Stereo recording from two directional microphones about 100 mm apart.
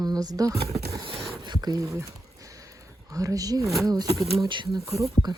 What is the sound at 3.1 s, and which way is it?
Speech, 35° right (ahead or behind).